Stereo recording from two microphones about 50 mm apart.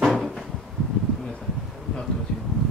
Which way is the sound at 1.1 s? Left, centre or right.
Centre.